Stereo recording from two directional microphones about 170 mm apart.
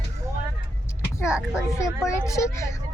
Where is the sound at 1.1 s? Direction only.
15° left (ahead or behind).